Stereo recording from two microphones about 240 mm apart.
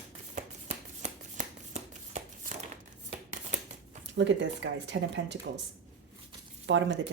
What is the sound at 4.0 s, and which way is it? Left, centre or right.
Speech, right.